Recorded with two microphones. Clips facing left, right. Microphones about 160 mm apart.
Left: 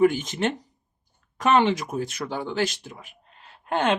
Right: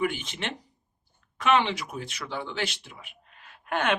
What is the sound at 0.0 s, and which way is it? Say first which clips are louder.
Speech: left 9 dB; 40° left (ahead or behind).